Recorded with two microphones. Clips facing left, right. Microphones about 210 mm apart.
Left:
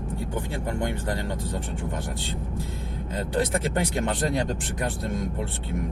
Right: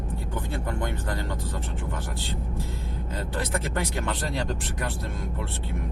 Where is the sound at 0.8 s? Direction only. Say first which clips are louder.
Left 3 dB; 20° left (ahead or behind).